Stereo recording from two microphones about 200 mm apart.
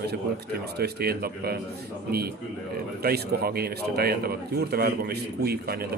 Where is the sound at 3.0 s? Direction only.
50° right (ahead or behind).